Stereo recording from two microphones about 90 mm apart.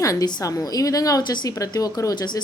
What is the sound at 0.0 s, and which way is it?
A woman's voice, 40° left (ahead or behind).